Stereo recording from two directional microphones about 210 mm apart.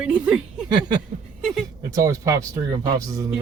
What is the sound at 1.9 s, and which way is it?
Speech, 15° right (ahead or behind).